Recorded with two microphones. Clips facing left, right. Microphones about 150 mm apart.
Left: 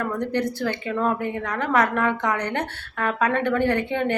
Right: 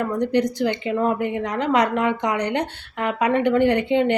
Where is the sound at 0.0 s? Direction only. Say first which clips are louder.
Right 4 dB; 15° right (ahead or behind).